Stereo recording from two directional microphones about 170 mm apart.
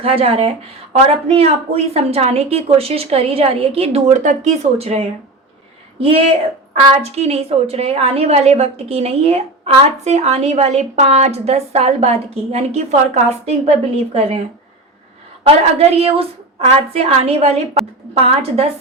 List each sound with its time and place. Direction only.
0.0 s a woman's voice: 35° right (ahead or behind)
15.4 s a woman's voice: 35° right (ahead or behind)